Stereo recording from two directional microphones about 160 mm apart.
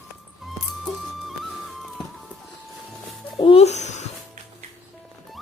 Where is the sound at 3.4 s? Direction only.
35° left (ahead or behind).